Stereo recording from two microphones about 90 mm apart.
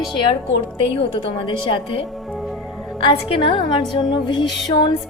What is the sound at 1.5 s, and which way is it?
A woman's voice, 70° left (ahead or behind).